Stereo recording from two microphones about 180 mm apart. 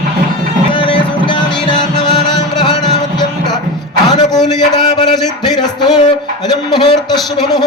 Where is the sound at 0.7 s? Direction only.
30° left (ahead or behind).